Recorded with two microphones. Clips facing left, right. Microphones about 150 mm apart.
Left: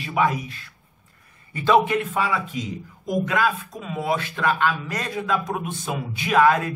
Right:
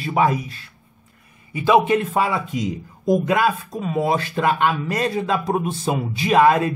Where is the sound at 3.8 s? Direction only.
35° right (ahead or behind).